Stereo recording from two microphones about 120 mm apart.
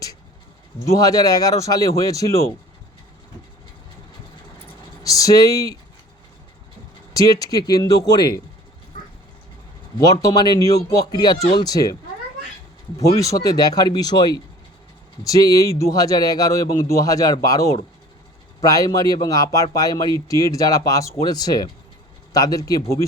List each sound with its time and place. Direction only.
0.9 s speech: 30° left (ahead or behind)
5.0 s speech: 30° left (ahead or behind)
7.1 s speech: 30° left (ahead or behind)
10.0 s speech: 30° left (ahead or behind)
13.0 s speech: 30° left (ahead or behind)